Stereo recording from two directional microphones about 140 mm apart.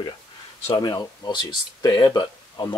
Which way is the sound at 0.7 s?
30° left (ahead or behind).